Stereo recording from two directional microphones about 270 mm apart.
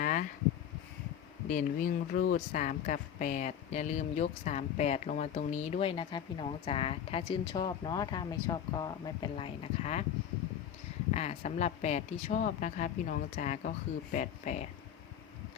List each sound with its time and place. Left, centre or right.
0.0 s a sound: left
1.5 s speech: left
11.1 s speech: left